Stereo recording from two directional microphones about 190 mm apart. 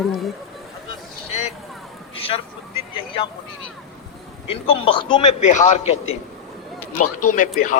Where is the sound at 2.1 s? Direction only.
30° left (ahead or behind).